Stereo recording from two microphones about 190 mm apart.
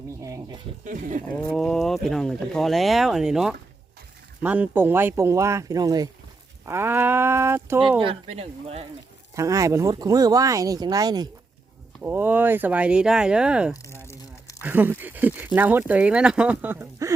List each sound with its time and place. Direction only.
0.2 s speech: 15° right (ahead or behind)
0.9 s speech: 45° right (ahead or behind)
1.5 s speech: centre (ahead or behind); by 7.8 s 15° right (ahead or behind)
7.8 s speech: 25° right (ahead or behind)
9.3 s speech: 15° right (ahead or behind)
13.8 s crumpling: 15° left (ahead or behind)
14.6 s speech: 10° right (ahead or behind)